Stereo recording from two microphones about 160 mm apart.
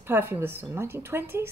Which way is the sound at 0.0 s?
15° right (ahead or behind).